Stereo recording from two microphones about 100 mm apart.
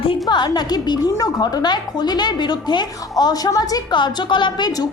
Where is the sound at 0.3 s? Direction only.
45° left (ahead or behind).